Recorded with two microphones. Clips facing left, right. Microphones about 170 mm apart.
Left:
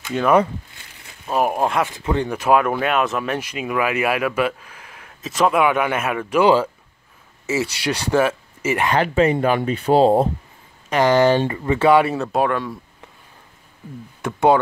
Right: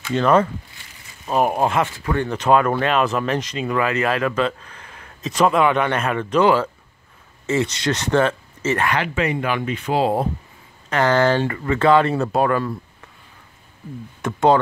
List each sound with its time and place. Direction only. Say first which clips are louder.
0.0 s speech: even; 10° left (ahead or behind)
2.0 s speech: left 1 dB; 15° left (ahead or behind)
2.3 s speech: right 1 dB; 5° left (ahead or behind)
8.9 s speech: left 5 dB; 35° left (ahead or behind)
10.9 s speech: left 2 dB; 15° left (ahead or behind)
12.2 s speech: right 1 dB; centre (ahead or behind)
14.2 s speech: even; 10° left (ahead or behind)